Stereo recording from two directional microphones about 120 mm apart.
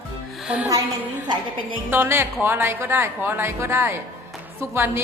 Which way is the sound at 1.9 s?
20° right (ahead or behind).